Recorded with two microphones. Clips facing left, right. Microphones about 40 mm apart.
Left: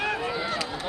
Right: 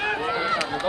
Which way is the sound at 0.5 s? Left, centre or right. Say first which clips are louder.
Right 6 dB; right.